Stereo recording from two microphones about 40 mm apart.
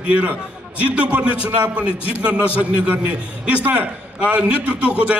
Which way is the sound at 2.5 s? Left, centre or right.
Right.